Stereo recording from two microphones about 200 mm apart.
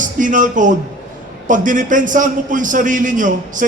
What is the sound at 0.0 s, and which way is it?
A man's voice, 40° right (ahead or behind).